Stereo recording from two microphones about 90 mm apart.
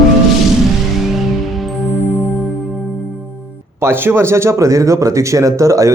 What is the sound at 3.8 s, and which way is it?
Speech, 25° right (ahead or behind).